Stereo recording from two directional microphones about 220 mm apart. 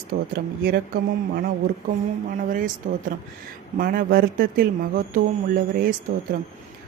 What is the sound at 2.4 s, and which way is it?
Speech, 40° right (ahead or behind).